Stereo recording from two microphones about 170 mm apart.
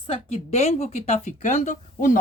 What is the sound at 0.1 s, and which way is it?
Speech, 35° left (ahead or behind).